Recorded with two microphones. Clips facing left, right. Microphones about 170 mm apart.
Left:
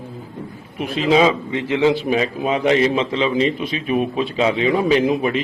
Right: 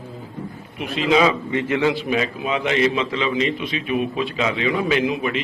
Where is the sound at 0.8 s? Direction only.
35° left (ahead or behind).